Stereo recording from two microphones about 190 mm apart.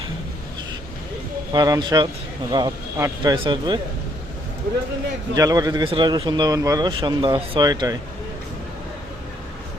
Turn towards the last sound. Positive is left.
turn(degrees=-20)  # may be behind; listen again after turning